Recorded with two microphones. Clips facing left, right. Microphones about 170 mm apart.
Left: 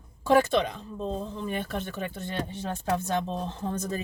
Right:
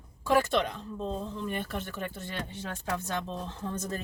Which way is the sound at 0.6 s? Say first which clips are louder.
Left 2 dB; 15° left (ahead or behind).